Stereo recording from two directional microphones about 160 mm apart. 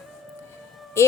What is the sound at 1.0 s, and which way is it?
Speech, 15° left (ahead or behind).